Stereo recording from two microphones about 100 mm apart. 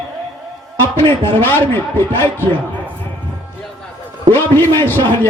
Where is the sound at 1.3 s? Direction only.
20° left (ahead or behind).